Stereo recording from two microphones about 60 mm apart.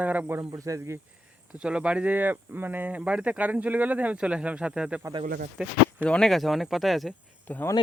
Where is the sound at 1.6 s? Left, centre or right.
Centre; by 3.0 s right.